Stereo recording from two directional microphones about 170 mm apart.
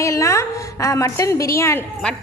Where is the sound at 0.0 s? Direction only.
20° left (ahead or behind).